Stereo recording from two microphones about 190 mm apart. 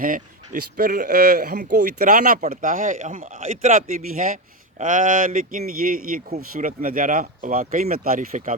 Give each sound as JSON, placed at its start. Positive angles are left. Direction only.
{"t": 0.0, "sound": "speech", "side_deg": -45}